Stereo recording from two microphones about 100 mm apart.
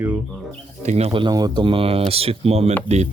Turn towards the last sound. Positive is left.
turn(degrees=-90)